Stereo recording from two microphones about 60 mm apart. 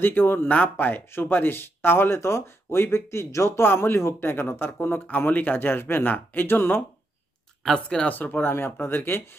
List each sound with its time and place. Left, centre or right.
0.0 s speech: left
0.5 s speech: left
7.6 s speech: centre
8.1 s speech: left